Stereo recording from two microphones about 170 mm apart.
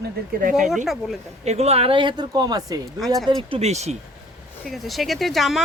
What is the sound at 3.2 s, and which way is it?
Speech, 35° right (ahead or behind).